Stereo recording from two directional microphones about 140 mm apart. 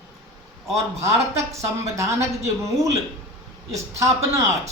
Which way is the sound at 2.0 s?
20° right (ahead or behind).